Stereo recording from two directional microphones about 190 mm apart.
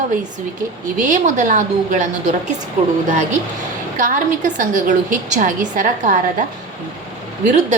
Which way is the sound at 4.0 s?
45° right (ahead or behind).